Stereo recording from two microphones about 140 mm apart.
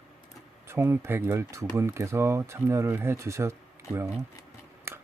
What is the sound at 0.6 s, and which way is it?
Speech, 15° right (ahead or behind).